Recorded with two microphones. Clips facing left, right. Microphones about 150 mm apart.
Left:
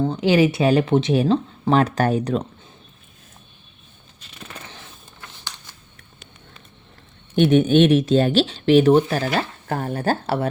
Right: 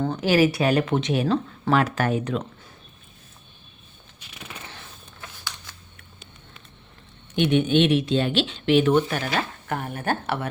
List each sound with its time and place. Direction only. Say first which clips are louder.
0.0 s speech: left 3 dB; 20° left (ahead or behind); by 2.4 s 35° left (ahead or behind)
7.3 s speech: left 5 dB; 40° left (ahead or behind)